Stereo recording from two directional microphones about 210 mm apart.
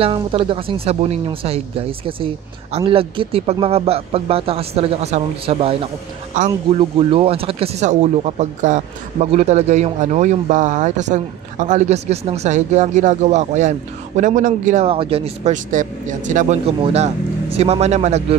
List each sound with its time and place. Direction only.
0.0 s speech: 25° right (ahead or behind)